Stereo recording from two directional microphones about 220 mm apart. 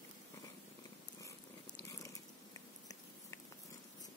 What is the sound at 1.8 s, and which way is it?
Biting, 15° left (ahead or behind).